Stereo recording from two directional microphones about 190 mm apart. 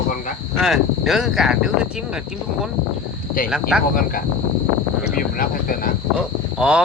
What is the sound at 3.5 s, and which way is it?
Speech, 5° right (ahead or behind).